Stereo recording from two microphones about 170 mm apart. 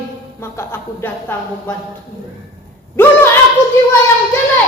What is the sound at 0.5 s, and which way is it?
Speech, 15° left (ahead or behind).